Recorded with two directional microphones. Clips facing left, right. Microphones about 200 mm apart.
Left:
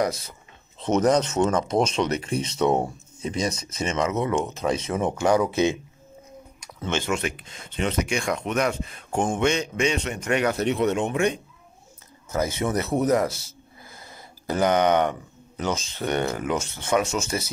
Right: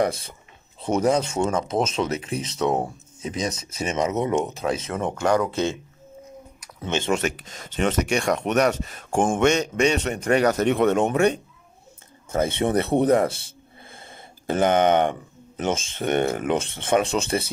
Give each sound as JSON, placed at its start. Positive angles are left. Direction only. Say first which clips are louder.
{"t": 0.0, "sound": "speech", "louder": "right 2 dB", "side_deg": -30}
{"t": 0.7, "sound": "speech", "louder": "left 1 dB", "side_deg": -10}
{"t": 3.8, "sound": "speech", "louder": "right 1 dB", "side_deg": -15}
{"t": 4.6, "sound": "speech", "louder": "left 1 dB", "side_deg": 0}
{"t": 5.0, "sound": "speech", "louder": "even", "side_deg": 10}
{"t": 6.8, "sound": "speech", "louder": "right 1 dB", "side_deg": -20}
{"t": 7.1, "sound": "a man's voice", "louder": "right 3 dB", "side_deg": -45}
{"t": 12.3, "sound": "speech", "louder": "right 3 dB", "side_deg": -30}